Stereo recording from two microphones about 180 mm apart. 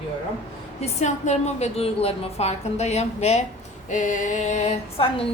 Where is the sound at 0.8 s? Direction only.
40° left (ahead or behind).